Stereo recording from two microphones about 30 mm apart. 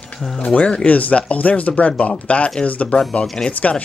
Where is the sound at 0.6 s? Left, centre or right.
Left.